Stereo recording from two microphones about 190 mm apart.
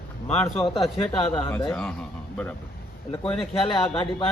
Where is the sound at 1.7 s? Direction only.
5° left (ahead or behind).